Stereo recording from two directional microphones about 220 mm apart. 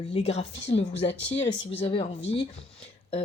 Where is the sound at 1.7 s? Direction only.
25° left (ahead or behind).